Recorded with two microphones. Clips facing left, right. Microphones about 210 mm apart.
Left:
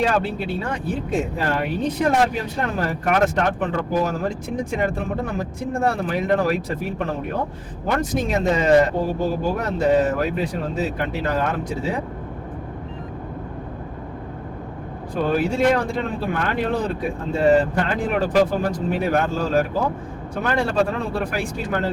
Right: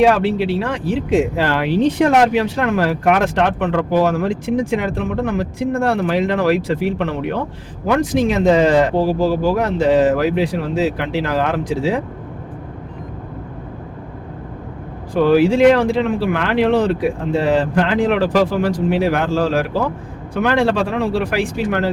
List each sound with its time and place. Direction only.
0.0 s speech: 85° right
7.9 s speech: 90° right
15.1 s speech: 85° right